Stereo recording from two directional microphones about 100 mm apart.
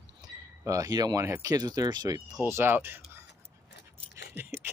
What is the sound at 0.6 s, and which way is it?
Speech, 35° right (ahead or behind).